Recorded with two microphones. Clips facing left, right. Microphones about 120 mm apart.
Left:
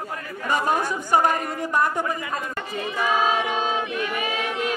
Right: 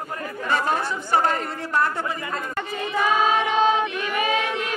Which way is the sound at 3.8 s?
70° right (ahead or behind).